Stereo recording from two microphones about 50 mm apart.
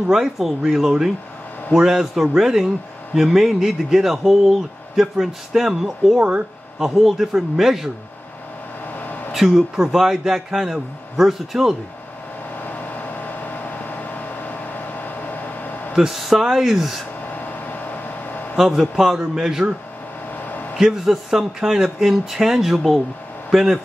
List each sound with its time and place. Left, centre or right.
0.1 s a man's voice: centre
8.9 s a sound: left
9.3 s a man's voice: centre
12.6 s vehicle: left
15.9 s a man's voice: centre
17.3 s a sound: left
18.6 s a man's voice: centre
20.3 s a sound: left
20.7 s a man's voice: centre